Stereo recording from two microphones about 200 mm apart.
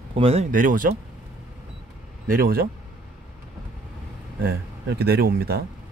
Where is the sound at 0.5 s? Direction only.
40° right (ahead or behind).